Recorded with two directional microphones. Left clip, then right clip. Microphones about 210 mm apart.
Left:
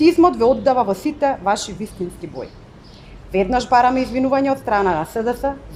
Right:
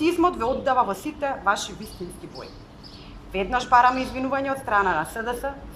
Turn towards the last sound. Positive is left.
turn(degrees=20)  # may be behind; listen again after turning